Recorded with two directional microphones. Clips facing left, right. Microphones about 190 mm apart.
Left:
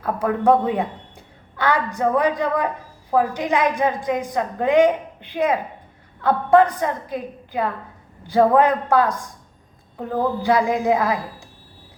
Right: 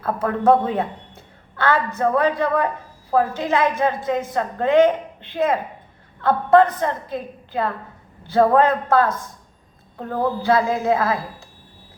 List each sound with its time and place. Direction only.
0.0 s a woman's voice: 15° left (ahead or behind)